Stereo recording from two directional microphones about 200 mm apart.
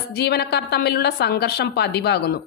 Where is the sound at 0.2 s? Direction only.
55° left (ahead or behind).